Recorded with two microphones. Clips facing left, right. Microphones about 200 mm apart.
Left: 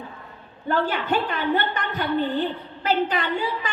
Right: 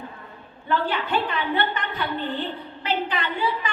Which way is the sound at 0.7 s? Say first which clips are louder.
Left 1 dB; 45° left (ahead or behind).